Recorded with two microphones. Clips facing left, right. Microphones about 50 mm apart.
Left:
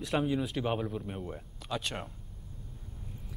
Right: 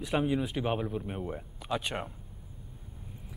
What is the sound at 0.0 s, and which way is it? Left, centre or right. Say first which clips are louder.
A man's voice: right 1 dB; centre.